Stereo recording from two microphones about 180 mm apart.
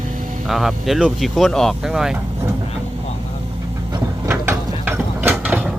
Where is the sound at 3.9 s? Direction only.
20° right (ahead or behind).